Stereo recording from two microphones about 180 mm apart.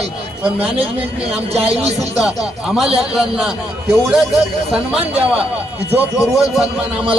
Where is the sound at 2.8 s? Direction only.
Centre (ahead or behind).